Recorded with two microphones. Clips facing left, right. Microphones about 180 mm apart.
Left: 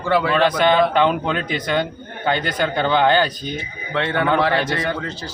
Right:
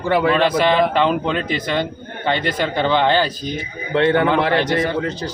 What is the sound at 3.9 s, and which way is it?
A man's voice, 20° right (ahead or behind).